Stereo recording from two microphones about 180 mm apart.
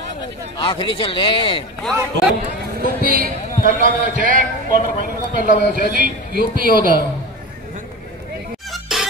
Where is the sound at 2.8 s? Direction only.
55° right (ahead or behind).